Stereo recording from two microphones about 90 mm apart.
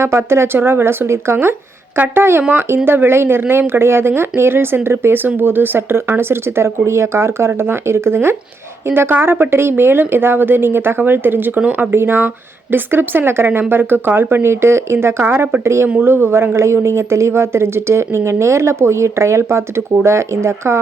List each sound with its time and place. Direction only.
0.0 s speech: 30° right (ahead or behind)